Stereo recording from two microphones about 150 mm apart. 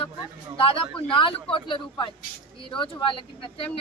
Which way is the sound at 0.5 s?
35° left (ahead or behind).